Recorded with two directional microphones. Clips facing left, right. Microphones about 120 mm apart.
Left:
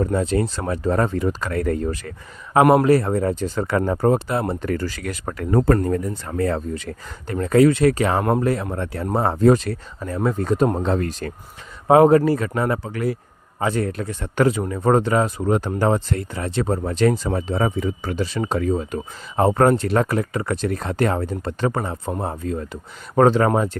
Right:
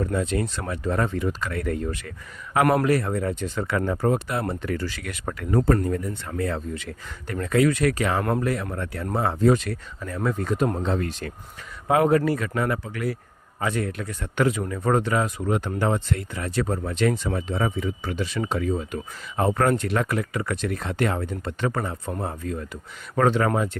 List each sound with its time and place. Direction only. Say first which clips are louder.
0.0 s speech: left 5 dB; 35° left (ahead or behind)
4.7 s speech: left 4 dB; 45° left (ahead or behind)
10.8 s speech: left 4 dB; 45° left (ahead or behind)